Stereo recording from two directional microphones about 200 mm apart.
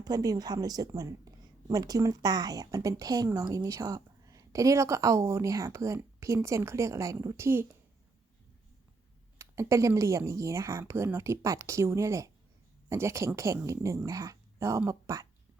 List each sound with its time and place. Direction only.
0.0 s a woman's voice: 20° right (ahead or behind)
9.4 s a woman's voice: 15° right (ahead or behind)